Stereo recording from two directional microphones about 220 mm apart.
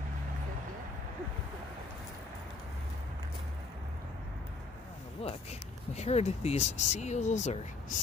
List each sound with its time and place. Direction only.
5.2 s speech: 25° left (ahead or behind)